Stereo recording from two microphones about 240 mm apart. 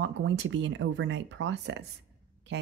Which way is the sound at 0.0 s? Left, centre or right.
Right.